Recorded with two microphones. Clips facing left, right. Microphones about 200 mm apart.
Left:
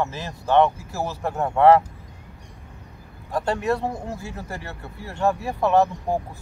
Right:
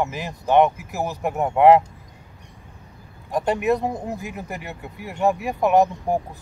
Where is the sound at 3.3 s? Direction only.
15° right (ahead or behind).